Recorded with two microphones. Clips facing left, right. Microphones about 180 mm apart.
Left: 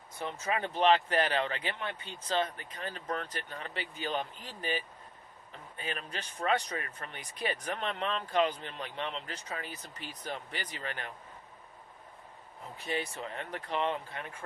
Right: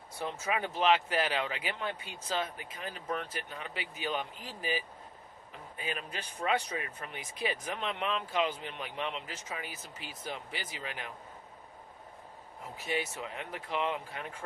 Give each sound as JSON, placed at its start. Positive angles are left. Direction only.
{"t": 0.2, "sound": "speech", "side_deg": -10}
{"t": 12.7, "sound": "speech", "side_deg": -5}
{"t": 13.7, "sound": "speech", "side_deg": 35}